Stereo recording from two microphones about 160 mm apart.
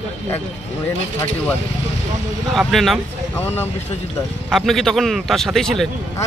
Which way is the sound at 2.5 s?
Centre (ahead or behind).